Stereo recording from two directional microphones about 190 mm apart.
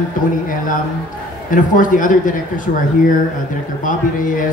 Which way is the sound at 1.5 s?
45° left (ahead or behind).